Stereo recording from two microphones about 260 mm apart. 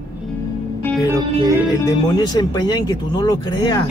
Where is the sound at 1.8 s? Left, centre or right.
Centre.